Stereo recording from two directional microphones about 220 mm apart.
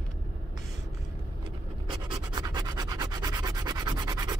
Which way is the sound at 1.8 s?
20° right (ahead or behind).